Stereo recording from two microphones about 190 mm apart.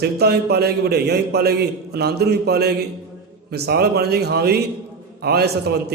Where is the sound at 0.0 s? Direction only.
55° right (ahead or behind).